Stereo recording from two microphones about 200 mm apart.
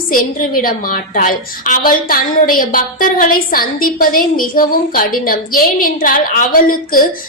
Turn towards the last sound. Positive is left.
turn(degrees=45)  # may be behind; listen again after turning